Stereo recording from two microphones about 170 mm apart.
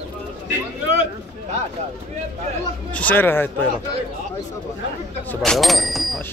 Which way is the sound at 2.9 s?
10° left (ahead or behind).